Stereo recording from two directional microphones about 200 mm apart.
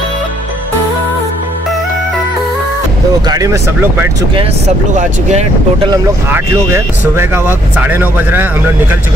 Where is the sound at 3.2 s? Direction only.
15° right (ahead or behind).